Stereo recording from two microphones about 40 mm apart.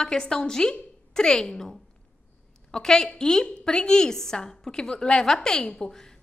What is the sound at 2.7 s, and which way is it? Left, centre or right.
A woman's voice, centre.